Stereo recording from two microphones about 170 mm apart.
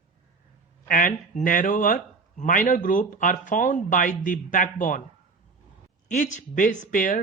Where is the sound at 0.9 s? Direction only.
55° left (ahead or behind).